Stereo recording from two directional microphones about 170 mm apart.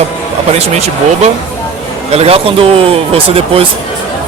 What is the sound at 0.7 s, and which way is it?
Speech, 40° right (ahead or behind).